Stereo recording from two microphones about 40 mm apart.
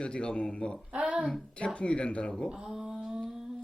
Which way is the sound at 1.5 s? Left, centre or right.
Left.